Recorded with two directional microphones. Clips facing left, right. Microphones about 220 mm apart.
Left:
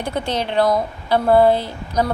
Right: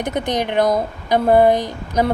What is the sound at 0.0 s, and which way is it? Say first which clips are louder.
Speech: right 2 dB; 20° right (ahead or behind).